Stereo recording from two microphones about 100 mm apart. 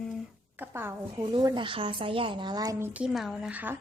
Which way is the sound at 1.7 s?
60° right (ahead or behind).